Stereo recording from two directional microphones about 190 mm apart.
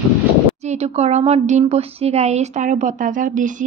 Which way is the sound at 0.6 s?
35° right (ahead or behind).